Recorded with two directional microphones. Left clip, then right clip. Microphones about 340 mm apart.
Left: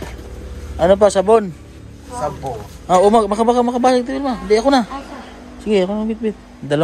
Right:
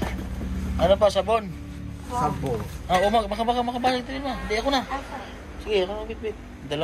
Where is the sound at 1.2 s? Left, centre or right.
Left.